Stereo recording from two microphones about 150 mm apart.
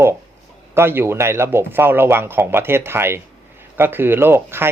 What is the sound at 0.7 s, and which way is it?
Speech, 15° right (ahead or behind).